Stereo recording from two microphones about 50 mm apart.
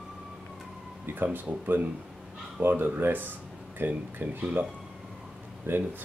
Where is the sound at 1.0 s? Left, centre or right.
Right.